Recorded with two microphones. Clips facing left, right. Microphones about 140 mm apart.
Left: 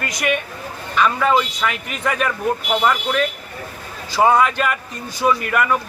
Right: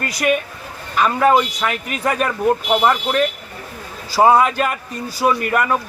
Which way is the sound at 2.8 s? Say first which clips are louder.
Right 2 dB; 30° right (ahead or behind).